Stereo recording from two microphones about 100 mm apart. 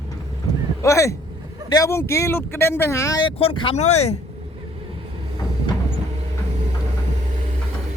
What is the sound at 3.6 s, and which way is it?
Speech, 75° left (ahead or behind).